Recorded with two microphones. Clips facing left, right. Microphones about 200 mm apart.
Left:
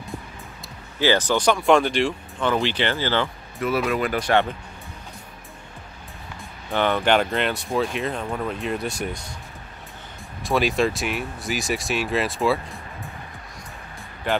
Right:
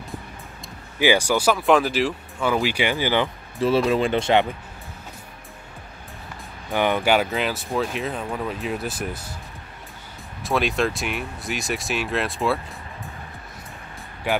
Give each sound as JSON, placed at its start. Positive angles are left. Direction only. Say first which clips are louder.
{"t": 0.9, "sound": "speech", "louder": "right 1 dB", "side_deg": -10}
{"t": 3.5, "sound": "speech", "louder": "right 4 dB", "side_deg": -30}
{"t": 6.7, "sound": "speech", "louder": "even", "side_deg": -15}
{"t": 10.4, "sound": "speech", "louder": "left 1 dB", "side_deg": 0}